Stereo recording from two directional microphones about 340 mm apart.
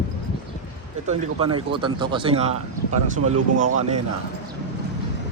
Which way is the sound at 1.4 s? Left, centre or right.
Centre.